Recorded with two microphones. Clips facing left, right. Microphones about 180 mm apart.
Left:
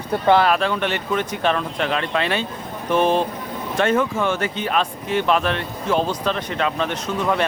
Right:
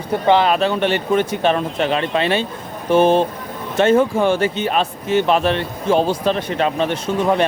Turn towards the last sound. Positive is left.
turn(degrees=-30)  # may be behind; listen again after turning